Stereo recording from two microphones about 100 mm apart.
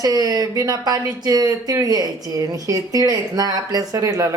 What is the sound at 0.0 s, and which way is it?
Speech, 40° right (ahead or behind).